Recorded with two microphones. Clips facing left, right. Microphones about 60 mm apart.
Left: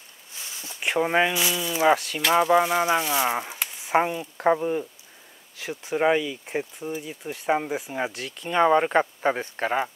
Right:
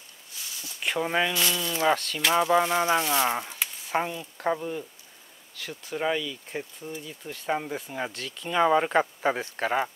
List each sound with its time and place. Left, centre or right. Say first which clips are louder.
0.5 s a sound: left 2 dB; left
0.9 s speech: left 4 dB; left
3.9 s speech: left 6 dB; left
5.9 s speech: left 6 dB; left
8.1 s speech: left 2 dB; centre